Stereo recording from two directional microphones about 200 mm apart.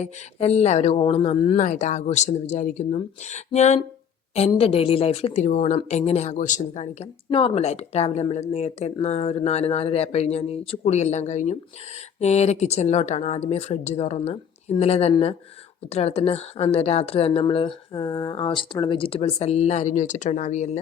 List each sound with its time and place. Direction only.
0.0 s speech: 30° left (ahead or behind)
7.3 s speech: 25° left (ahead or behind)